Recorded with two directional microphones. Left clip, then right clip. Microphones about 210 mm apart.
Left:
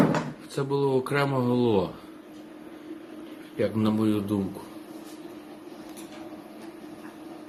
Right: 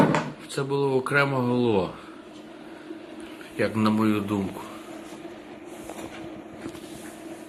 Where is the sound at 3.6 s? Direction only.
15° left (ahead or behind).